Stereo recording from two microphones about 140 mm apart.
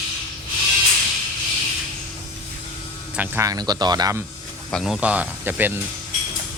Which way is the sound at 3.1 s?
15° right (ahead or behind).